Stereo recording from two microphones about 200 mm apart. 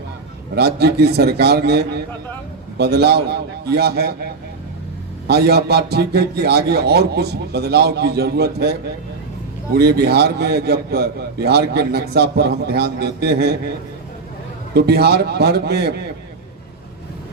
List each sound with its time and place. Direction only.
0.5 s a man's voice: 55° right (ahead or behind)
5.3 s a man's voice: 55° right (ahead or behind)
9.7 s a man's voice: 55° right (ahead or behind)
14.7 s a man's voice: 55° right (ahead or behind)